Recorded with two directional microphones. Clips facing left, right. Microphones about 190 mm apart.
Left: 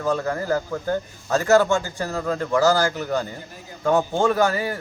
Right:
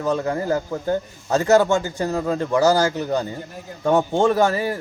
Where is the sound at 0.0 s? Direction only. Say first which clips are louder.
Right 2 dB; 20° right (ahead or behind).